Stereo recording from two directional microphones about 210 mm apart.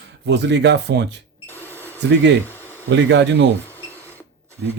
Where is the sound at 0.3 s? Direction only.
55° right (ahead or behind).